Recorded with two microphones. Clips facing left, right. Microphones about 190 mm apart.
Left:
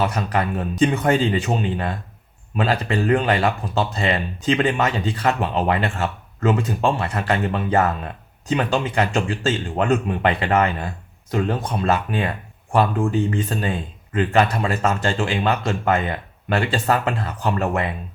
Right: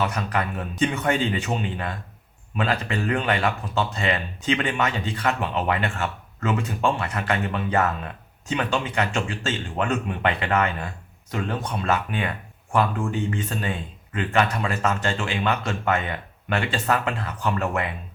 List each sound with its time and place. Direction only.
0.0 s speech: 35° left (ahead or behind)